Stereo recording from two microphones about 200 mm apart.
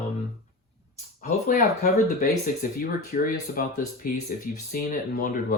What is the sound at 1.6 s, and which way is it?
Speech, 45° left (ahead or behind).